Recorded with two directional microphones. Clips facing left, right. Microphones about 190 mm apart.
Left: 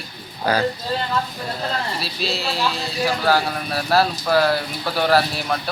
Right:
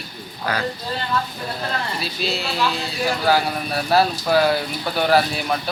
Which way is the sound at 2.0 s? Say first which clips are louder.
Even; centre (ahead or behind).